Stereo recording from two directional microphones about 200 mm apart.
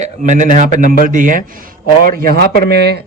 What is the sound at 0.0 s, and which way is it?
Speech, 40° right (ahead or behind).